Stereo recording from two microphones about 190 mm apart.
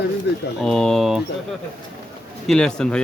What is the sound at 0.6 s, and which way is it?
Speech, centre (ahead or behind).